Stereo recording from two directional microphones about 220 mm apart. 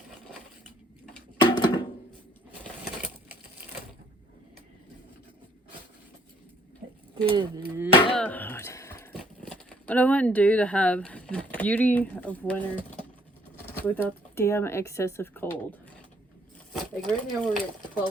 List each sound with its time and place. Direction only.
1.4 s a sound: 20° left (ahead or behind)
7.3 s speech: 20° right (ahead or behind)
8.1 s a sound: 5° left (ahead or behind)
9.1 s speech: 5° left (ahead or behind)
13.7 s speech: 10° left (ahead or behind)
16.7 s speech: 5° left (ahead or behind)